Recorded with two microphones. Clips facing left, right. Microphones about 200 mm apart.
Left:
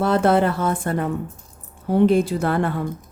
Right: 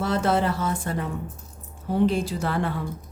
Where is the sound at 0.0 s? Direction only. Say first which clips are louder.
Left 6 dB; 60° left (ahead or behind).